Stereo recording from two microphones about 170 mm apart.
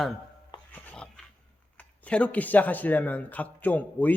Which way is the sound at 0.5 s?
30° left (ahead or behind).